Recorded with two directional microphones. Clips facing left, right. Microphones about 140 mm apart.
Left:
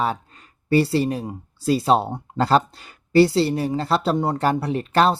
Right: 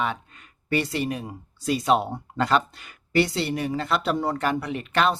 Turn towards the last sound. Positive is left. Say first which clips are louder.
# left 5 dB
turn(degrees=35)  # may be behind; listen again after turning